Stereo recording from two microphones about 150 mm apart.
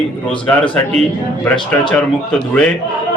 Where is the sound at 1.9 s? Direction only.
5° left (ahead or behind).